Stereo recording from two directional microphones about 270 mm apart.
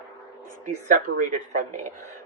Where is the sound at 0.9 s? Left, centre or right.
Right.